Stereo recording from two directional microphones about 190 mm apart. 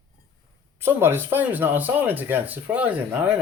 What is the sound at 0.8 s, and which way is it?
Speech, 10° right (ahead or behind).